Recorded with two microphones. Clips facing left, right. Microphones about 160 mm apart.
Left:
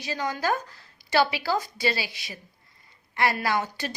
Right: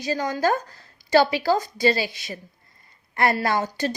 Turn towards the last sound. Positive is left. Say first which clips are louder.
# right 4 dB
turn(degrees=-40)  # may be behind; listen again after turning